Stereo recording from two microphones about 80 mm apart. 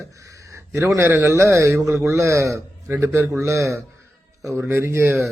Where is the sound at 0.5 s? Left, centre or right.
Right.